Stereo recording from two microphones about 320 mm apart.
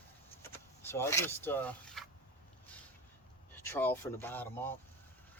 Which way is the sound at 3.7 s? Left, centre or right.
Centre.